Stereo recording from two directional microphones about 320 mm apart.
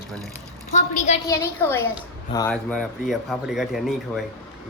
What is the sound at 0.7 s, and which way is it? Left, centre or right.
Speech, left.